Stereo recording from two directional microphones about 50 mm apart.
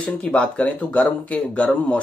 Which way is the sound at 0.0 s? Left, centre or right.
Left.